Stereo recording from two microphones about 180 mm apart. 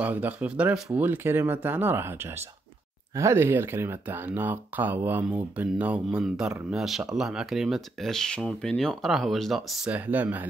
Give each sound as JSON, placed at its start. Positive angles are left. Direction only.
{"t": 0.0, "sound": "speech", "side_deg": -10}